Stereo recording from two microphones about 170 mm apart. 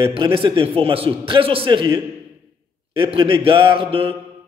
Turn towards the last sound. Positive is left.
turn(degrees=-30)  # may be behind; listen again after turning